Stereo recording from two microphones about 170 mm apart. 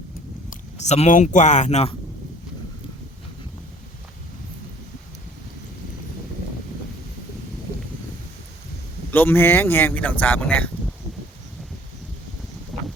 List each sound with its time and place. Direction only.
0.5 s speech: 40° left (ahead or behind)
9.1 s speech: 10° left (ahead or behind)